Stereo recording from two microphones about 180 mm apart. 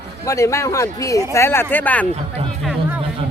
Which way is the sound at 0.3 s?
15° left (ahead or behind).